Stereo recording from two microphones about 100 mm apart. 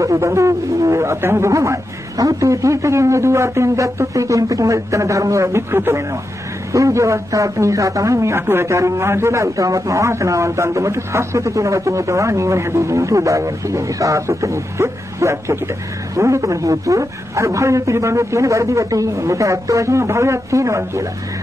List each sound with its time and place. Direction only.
0.0 s a man's voice: 30° right (ahead or behind)